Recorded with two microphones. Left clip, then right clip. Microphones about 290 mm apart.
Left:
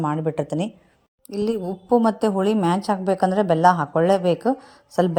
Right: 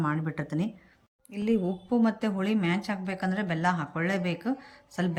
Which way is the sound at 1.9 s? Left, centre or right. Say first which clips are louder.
Left 11 dB; left.